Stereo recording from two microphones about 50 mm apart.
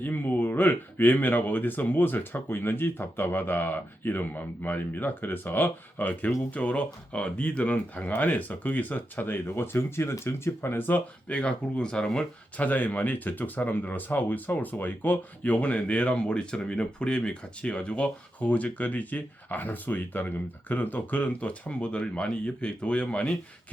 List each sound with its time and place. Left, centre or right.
0.0 s speech: left
6.5 s speech: left
11.3 s speech: left
12.5 s speech: left